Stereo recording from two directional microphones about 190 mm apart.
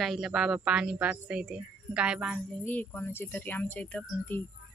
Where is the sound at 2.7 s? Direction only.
10° left (ahead or behind).